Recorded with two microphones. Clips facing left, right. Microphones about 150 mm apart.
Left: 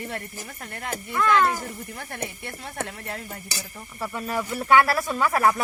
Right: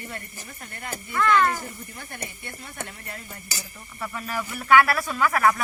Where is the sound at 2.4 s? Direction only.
90° left.